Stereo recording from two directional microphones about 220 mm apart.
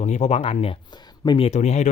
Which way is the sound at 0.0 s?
30° left (ahead or behind).